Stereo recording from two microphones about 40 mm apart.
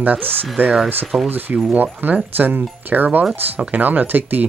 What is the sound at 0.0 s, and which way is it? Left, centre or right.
Speech, right.